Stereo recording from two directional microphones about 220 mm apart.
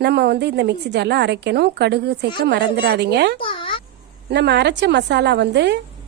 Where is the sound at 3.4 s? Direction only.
25° left (ahead or behind).